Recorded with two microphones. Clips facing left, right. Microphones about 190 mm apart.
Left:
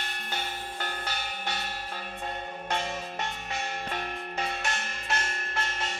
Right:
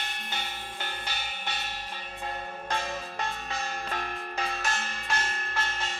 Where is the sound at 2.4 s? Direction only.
20° left (ahead or behind).